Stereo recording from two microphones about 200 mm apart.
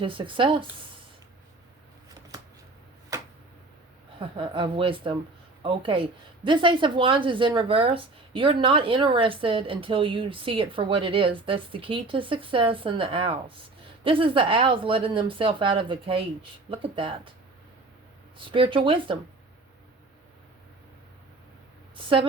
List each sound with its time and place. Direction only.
0.0 s speech: 25° right (ahead or behind)
3.1 s tick-tock: 15° right (ahead or behind)
4.2 s speech: 25° right (ahead or behind)
18.4 s speech: 25° right (ahead or behind)
21.9 s speech: 25° right (ahead or behind)